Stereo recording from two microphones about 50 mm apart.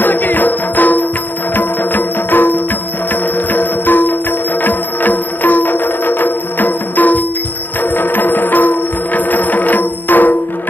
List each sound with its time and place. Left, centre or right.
0.0 s music: left